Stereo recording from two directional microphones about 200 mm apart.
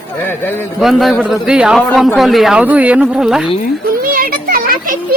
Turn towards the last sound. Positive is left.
turn(degrees=-45)  # may be behind; listen again after turning